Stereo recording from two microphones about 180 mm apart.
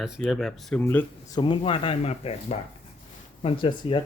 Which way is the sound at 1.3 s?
25° left (ahead or behind).